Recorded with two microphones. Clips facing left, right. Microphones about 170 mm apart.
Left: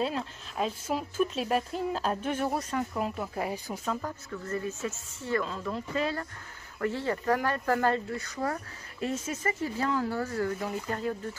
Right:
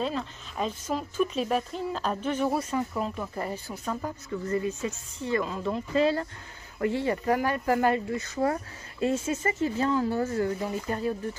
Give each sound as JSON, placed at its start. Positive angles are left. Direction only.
{"t": 0.0, "sound": "speech", "side_deg": 5}
{"t": 4.0, "sound": "speech", "side_deg": -15}
{"t": 5.6, "sound": "speech", "side_deg": -30}
{"t": 6.8, "sound": "speech", "side_deg": -15}